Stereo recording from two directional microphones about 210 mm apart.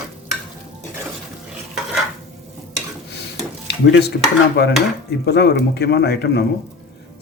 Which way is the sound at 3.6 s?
55° left (ahead or behind).